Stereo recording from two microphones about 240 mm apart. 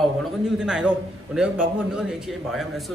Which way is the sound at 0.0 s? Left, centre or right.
Centre.